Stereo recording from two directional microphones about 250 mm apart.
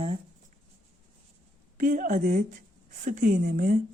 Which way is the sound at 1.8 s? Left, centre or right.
Right.